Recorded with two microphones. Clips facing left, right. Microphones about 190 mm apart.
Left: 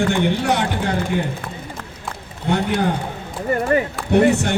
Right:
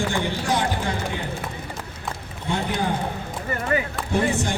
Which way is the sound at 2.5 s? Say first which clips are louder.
Left 6 dB; 65° left (ahead or behind).